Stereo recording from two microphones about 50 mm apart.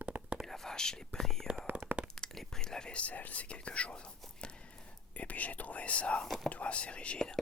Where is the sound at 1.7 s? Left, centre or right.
Right.